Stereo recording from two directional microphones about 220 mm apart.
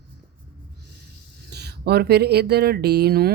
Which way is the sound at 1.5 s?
50° right (ahead or behind).